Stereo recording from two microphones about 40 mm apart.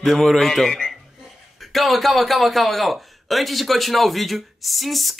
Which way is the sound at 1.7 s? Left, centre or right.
Centre.